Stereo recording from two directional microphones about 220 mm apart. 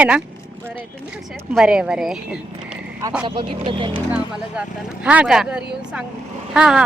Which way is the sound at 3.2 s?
25° right (ahead or behind).